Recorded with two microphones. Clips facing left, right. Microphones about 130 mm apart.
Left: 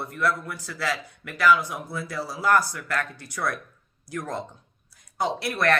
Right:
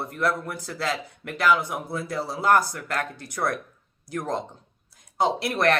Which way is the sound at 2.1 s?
25° right (ahead or behind).